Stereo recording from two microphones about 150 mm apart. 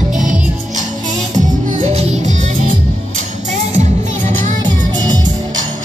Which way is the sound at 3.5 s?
50° right (ahead or behind).